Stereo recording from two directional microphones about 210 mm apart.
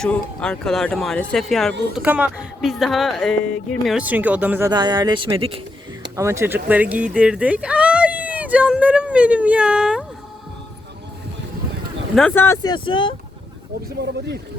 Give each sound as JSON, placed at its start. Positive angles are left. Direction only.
{"t": 0.0, "sound": "speech", "side_deg": 5}
{"t": 4.7, "sound": "speech", "side_deg": -20}
{"t": 6.1, "sound": "speech", "side_deg": -15}
{"t": 12.1, "sound": "speech", "side_deg": 5}